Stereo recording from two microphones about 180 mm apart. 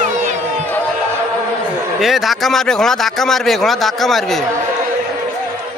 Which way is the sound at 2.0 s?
Centre (ahead or behind).